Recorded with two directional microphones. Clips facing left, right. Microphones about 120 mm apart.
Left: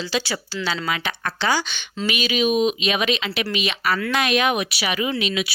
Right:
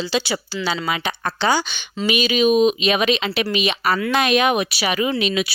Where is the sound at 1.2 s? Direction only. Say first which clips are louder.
Right 3 dB; 30° right (ahead or behind).